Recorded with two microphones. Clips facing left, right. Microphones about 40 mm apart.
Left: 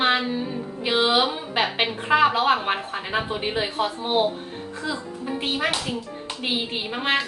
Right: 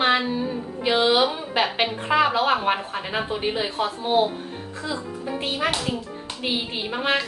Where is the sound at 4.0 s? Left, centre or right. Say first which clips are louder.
Right 3 dB; centre.